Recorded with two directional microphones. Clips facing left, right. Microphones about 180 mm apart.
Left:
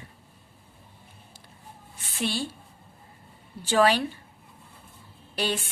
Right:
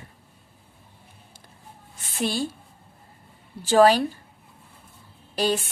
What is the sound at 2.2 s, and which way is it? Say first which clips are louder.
Speech: right 3 dB; 45° right (ahead or behind).